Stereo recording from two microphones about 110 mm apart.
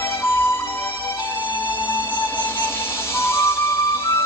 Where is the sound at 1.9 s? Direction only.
20° left (ahead or behind).